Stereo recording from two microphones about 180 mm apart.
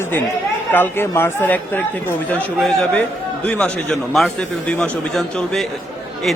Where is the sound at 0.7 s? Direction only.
10° left (ahead or behind).